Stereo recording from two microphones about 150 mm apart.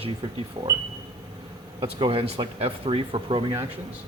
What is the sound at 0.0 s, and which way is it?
Speech, 35° right (ahead or behind).